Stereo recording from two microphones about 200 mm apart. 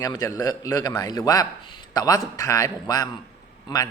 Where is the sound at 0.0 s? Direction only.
20° left (ahead or behind).